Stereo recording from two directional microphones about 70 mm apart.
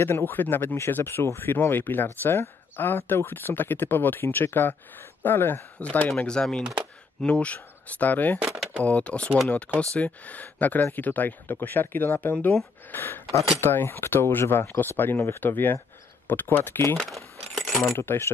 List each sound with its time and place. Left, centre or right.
0.0 s speech: left
6.2 s speech: centre; by 16.9 s left
17.1 s keys jangling: centre
17.9 s speech: left